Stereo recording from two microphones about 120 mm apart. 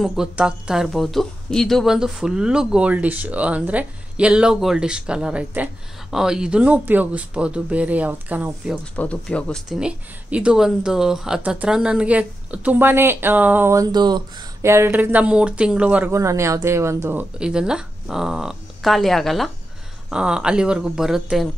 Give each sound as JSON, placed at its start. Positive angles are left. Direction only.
{"t": 0.0, "sound": "a woman's voice", "side_deg": -5}
{"t": 8.9, "sound": "speech", "side_deg": 10}
{"t": 9.7, "sound": "a woman's voice", "side_deg": -5}
{"t": 13.9, "sound": "speech", "side_deg": -35}
{"t": 14.6, "sound": "a woman's voice", "side_deg": -20}
{"t": 16.1, "sound": "a woman's voice", "side_deg": -25}